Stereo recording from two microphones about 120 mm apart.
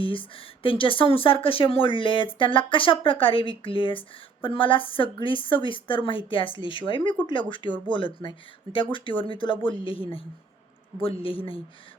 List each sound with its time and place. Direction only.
0.0 s speech: 45° left (ahead or behind)